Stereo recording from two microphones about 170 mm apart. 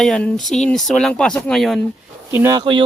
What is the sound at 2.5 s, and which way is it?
Speech, 30° right (ahead or behind).